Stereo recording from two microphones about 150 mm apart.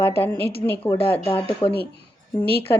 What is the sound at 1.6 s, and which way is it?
Speech, 40° left (ahead or behind).